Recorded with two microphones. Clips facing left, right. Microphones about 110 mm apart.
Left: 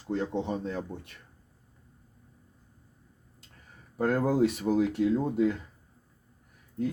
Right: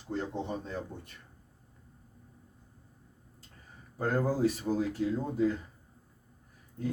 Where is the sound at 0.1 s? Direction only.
70° left (ahead or behind).